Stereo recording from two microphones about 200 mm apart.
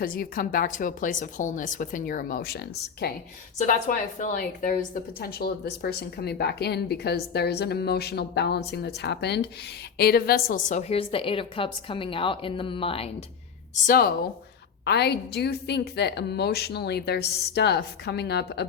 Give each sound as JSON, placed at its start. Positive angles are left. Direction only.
{"t": 0.0, "sound": "a woman's voice", "side_deg": 50}
{"t": 3.6, "sound": "a woman's voice", "side_deg": 40}
{"t": 13.7, "sound": "a woman's voice", "side_deg": 45}